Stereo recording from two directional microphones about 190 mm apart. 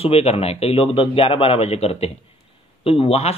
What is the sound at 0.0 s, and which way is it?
Speech, 30° left (ahead or behind).